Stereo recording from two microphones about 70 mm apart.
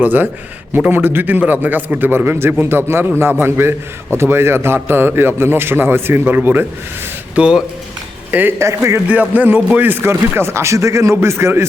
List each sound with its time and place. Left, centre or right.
0.0 s a man's voice: right
7.3 s speech: centre
8.3 s a man's voice: right
8.5 s speech: right
9.0 s speech: right